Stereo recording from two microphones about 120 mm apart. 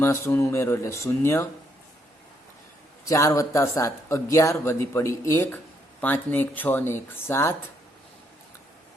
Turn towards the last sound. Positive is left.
turn(degrees=20)  # may be behind; listen again after turning